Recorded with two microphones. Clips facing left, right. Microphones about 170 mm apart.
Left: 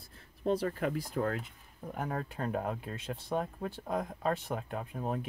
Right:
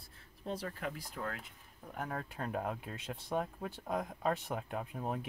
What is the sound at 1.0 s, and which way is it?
Speech, 35° left (ahead or behind).